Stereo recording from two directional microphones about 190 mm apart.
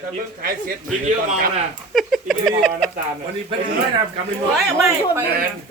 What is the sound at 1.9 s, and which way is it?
Speech, centre (ahead or behind).